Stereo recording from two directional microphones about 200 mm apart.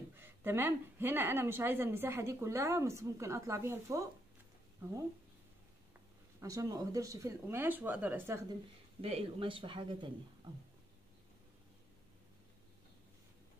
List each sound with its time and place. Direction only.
0.1 s speech: 10° right (ahead or behind)
6.4 s speech: 15° right (ahead or behind)
9.0 s speech: 30° right (ahead or behind)